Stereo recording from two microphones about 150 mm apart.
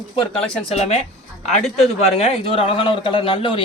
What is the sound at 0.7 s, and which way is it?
Speech, 45° left (ahead or behind).